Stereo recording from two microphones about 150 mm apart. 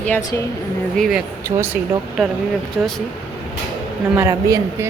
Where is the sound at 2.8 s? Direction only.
Centre (ahead or behind).